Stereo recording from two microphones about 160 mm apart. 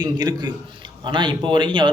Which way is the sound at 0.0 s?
25° right (ahead or behind).